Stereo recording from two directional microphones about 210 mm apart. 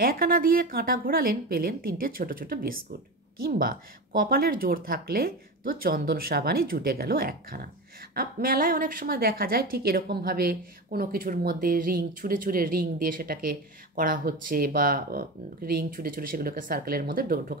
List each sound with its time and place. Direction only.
0.0 s a woman's voice: 45° right (ahead or behind)